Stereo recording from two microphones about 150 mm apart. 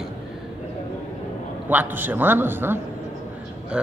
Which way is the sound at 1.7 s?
10° right (ahead or behind).